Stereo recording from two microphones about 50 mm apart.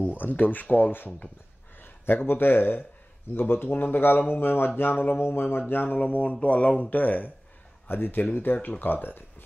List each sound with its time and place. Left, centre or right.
0.0 s a man's voice: left
5.2 s speech: left